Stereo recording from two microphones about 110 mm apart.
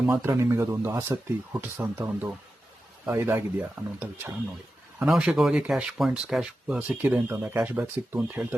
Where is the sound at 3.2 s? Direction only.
20° right (ahead or behind).